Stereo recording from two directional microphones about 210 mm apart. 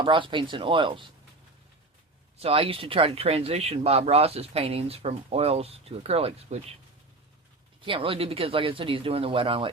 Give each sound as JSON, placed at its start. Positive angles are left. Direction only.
{"t": 0.0, "sound": "speech", "side_deg": -25}
{"t": 2.4, "sound": "speech", "side_deg": -25}
{"t": 7.8, "sound": "speech", "side_deg": -25}